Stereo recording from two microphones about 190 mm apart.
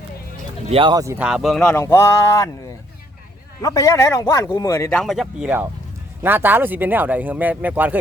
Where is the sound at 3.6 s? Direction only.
15° left (ahead or behind).